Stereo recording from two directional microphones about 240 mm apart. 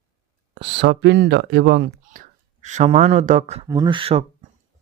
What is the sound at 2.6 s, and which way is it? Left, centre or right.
Speech, right.